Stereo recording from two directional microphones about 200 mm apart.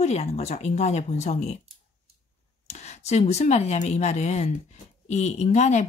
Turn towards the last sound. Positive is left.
turn(degrees=35)  # may be behind; listen again after turning